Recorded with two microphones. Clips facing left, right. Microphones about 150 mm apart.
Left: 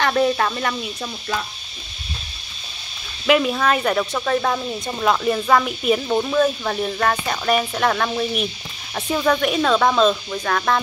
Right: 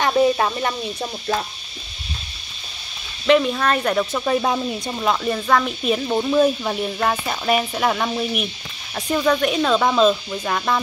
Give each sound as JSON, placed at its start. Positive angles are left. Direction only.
{"t": 0.0, "sound": "speech", "side_deg": -20}
{"t": 3.3, "sound": "speech", "side_deg": 5}
{"t": 5.0, "sound": "speech", "side_deg": 0}
{"t": 6.0, "sound": "speech", "side_deg": -10}